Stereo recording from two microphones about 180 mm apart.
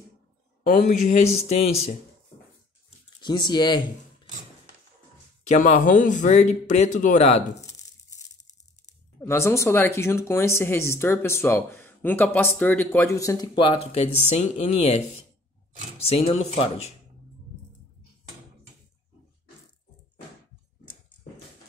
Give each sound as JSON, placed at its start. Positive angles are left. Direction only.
{"t": 0.7, "sound": "speech", "side_deg": 45}
{"t": 3.2, "sound": "speech", "side_deg": 25}
{"t": 5.5, "sound": "speech", "side_deg": 45}
{"t": 7.6, "sound": "a sound", "side_deg": 20}
{"t": 9.2, "sound": "speech", "side_deg": 15}